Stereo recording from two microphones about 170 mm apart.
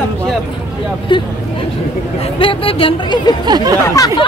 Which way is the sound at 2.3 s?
30° left (ahead or behind).